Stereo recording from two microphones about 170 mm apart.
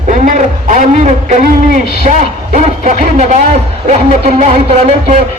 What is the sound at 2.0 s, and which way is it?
A man's voice, 45° right (ahead or behind).